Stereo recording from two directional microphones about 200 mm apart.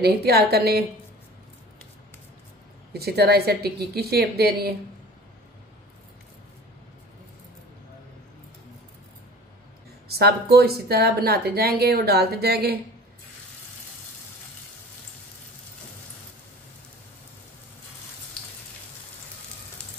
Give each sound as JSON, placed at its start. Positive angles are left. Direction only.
{"t": 0.0, "sound": "a woman's voice", "side_deg": -50}
{"t": 2.9, "sound": "a woman's voice", "side_deg": -55}
{"t": 10.0, "sound": "a woman's voice", "side_deg": -50}